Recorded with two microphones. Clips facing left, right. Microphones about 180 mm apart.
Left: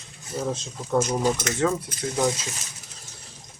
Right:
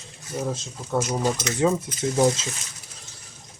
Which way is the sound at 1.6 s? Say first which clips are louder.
Right 2 dB; 20° right (ahead or behind).